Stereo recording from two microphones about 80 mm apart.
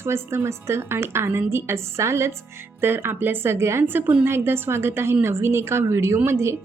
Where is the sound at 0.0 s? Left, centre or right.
Right.